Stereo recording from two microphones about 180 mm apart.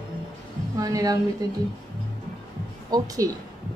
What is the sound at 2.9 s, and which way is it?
Speech, 20° right (ahead or behind).